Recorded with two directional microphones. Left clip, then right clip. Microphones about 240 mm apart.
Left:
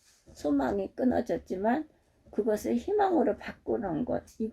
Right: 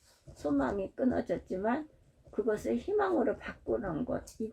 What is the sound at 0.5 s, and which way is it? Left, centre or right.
Speech, left.